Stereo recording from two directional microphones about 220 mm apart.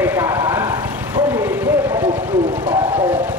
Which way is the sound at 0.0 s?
10° right (ahead or behind).